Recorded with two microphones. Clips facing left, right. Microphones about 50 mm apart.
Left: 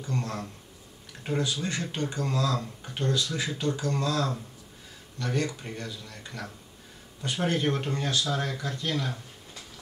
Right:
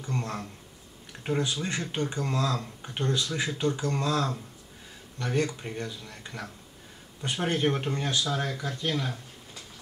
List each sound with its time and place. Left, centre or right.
0.0 s speech: right
1.4 s speech: right
7.4 s speech: centre
8.3 s speech: centre